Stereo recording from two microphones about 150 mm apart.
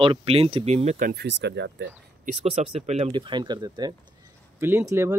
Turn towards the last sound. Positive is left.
turn(degrees=-20)  # may be behind; listen again after turning